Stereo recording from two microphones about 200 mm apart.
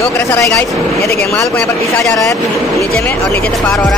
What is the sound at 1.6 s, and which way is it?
Speech, 15° left (ahead or behind).